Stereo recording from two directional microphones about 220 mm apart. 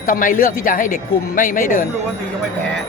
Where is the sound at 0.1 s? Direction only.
40° left (ahead or behind).